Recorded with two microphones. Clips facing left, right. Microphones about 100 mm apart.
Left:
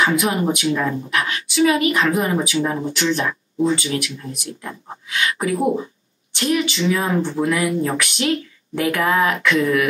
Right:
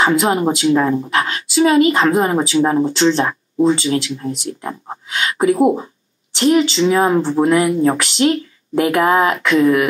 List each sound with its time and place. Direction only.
0.0 s a woman's voice: 30° right (ahead or behind)